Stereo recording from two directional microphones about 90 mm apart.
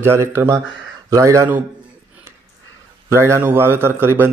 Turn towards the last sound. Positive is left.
turn(degrees=-25)  # may be behind; listen again after turning